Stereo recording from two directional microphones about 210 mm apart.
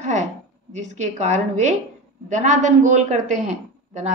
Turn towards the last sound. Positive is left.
turn(degrees=-35)  # may be behind; listen again after turning